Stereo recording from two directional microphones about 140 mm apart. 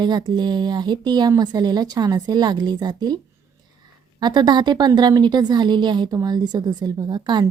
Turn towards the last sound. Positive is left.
turn(degrees=-30)  # may be behind; listen again after turning